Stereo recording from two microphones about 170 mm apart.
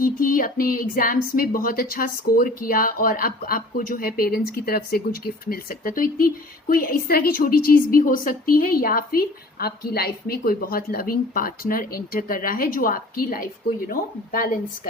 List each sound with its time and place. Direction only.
0.0 s speech: 55° left (ahead or behind)